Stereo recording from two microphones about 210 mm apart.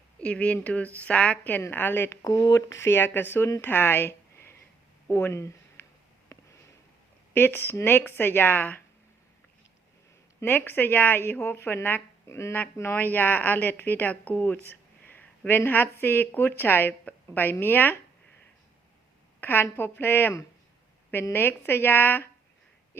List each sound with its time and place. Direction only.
0.2 s a woman's voice: 5° left (ahead or behind)
6.3 s sniff: 15° left (ahead or behind)
7.3 s a woman's voice: 10° left (ahead or behind)
10.4 s a woman's voice: 10° left (ahead or behind)
19.4 s a woman's voice: 10° left (ahead or behind)